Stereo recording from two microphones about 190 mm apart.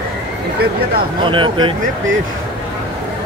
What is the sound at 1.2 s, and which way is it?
Speech, 25° right (ahead or behind).